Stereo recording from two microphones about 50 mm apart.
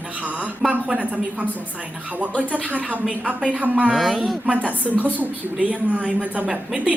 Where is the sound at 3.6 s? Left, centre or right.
Right.